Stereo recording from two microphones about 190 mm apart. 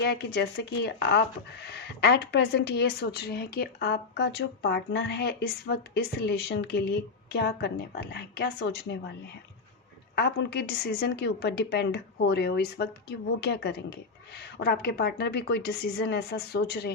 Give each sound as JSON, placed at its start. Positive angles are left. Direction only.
{"t": 0.0, "sound": "speech", "side_deg": 60}
{"t": 10.2, "sound": "speech", "side_deg": 60}